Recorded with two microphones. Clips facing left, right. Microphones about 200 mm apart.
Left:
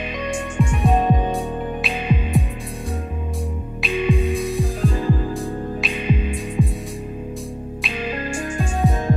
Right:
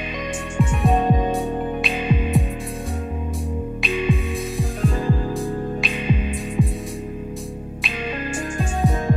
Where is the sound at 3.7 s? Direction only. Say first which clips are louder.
Left 3 dB; centre (ahead or behind).